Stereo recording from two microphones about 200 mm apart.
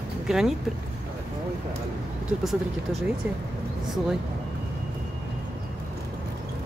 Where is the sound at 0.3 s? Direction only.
Centre (ahead or behind).